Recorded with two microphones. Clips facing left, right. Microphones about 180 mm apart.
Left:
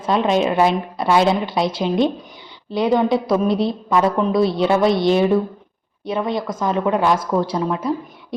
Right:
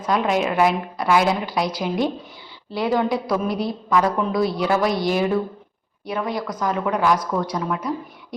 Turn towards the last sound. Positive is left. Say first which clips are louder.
# left 4 dB
turn(degrees=25)  # may be behind; listen again after turning